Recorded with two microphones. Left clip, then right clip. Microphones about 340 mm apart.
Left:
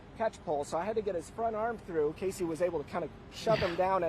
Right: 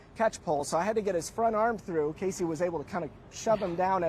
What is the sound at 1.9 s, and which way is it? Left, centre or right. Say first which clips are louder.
Speech: right 2 dB; right.